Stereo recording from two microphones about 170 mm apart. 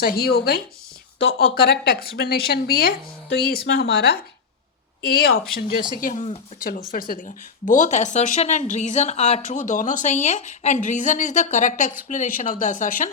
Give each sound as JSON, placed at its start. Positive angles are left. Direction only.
{"t": 0.0, "sound": "speech", "side_deg": 65}
{"t": 3.7, "sound": "a woman's voice", "side_deg": 85}